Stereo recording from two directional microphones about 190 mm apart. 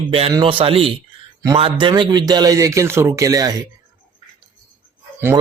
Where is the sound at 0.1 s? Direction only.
25° right (ahead or behind).